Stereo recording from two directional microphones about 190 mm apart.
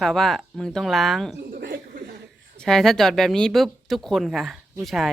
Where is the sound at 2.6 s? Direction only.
Centre (ahead or behind).